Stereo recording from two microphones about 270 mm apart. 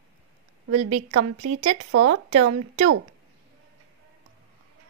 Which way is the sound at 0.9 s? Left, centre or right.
Right.